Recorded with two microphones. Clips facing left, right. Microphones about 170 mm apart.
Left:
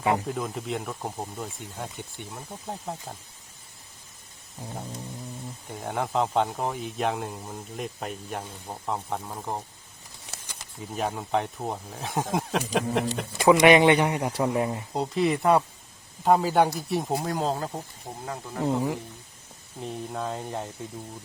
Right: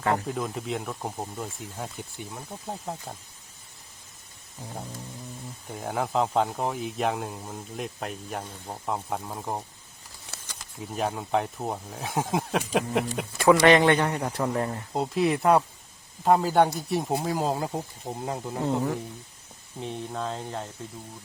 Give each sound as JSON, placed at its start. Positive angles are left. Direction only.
{"t": 0.3, "sound": "speech", "side_deg": 0}
{"t": 5.6, "sound": "speech", "side_deg": 0}
{"t": 10.9, "sound": "speech", "side_deg": 0}
{"t": 13.4, "sound": "speech", "side_deg": 15}
{"t": 14.9, "sound": "speech", "side_deg": 0}
{"t": 18.6, "sound": "speech", "side_deg": 10}